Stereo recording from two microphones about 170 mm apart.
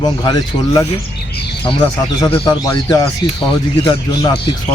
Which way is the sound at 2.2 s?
30° left (ahead or behind).